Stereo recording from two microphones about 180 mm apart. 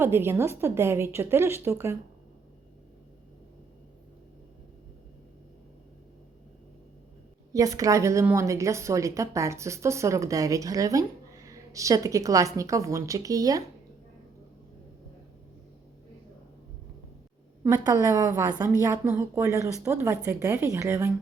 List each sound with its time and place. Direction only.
0.0 s a woman's voice: 15° right (ahead or behind)
7.5 s a woman's voice: 20° right (ahead or behind)
17.6 s a woman's voice: 20° right (ahead or behind)